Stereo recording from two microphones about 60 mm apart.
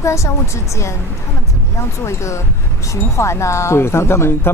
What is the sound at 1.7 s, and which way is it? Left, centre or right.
Speech, left.